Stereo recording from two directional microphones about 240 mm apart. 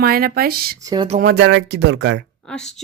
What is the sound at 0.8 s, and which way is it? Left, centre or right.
Speech, centre.